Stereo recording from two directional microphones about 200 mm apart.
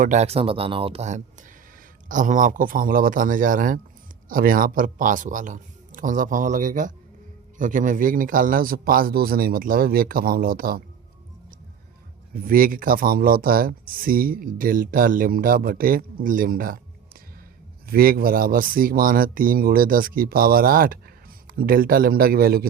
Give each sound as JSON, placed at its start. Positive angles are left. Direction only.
{"t": 0.0, "sound": "speech", "side_deg": -35}
{"t": 12.3, "sound": "speech", "side_deg": -45}
{"t": 17.8, "sound": "speech", "side_deg": -50}